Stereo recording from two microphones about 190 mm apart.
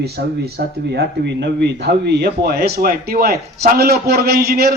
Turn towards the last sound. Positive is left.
turn(degrees=-55)  # may be behind; listen again after turning